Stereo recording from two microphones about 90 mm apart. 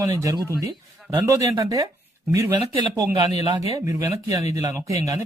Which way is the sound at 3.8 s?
35° right (ahead or behind).